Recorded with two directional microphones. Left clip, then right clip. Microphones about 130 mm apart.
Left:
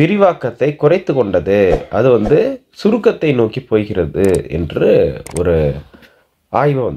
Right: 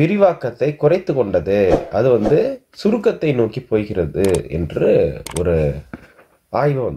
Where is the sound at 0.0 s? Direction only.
20° left (ahead or behind).